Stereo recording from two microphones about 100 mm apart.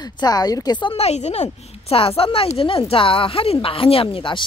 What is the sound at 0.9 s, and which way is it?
A woman's voice, 90° left.